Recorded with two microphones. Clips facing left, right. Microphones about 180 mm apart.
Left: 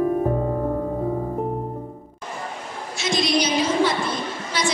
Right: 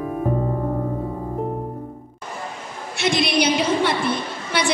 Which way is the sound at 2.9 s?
60° right (ahead or behind).